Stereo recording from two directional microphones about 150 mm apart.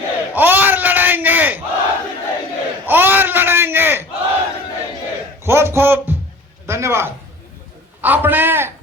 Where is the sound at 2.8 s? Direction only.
10° right (ahead or behind).